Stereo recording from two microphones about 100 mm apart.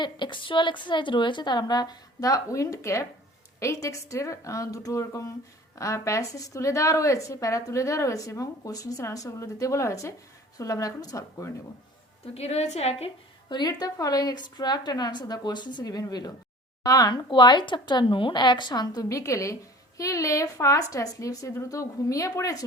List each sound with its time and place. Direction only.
0.0 s a woman's voice: 50° left (ahead or behind); by 11.4 s 35° left (ahead or behind)
12.2 s a woman's voice: 90° left
13.5 s a woman's voice: 45° left (ahead or behind)